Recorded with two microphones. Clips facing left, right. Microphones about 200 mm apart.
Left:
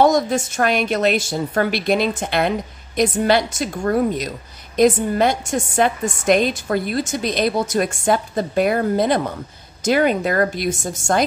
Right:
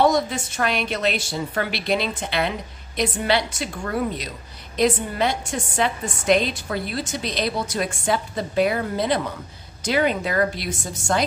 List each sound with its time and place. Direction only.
0.0 s a woman's voice: 45° left (ahead or behind)